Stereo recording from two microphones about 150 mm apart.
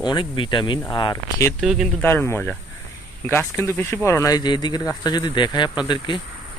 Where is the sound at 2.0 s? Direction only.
15° left (ahead or behind).